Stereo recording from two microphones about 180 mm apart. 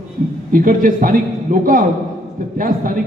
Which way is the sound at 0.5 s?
50° right (ahead or behind).